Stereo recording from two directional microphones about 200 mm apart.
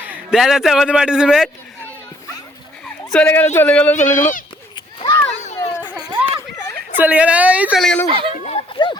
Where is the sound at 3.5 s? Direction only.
10° left (ahead or behind).